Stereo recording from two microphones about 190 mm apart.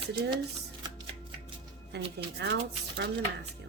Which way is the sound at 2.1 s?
65° right (ahead or behind).